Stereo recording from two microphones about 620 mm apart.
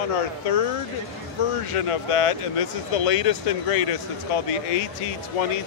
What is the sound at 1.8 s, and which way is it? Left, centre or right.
Speech, left.